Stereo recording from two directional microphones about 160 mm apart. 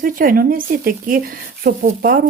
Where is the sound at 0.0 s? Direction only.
60° right (ahead or behind).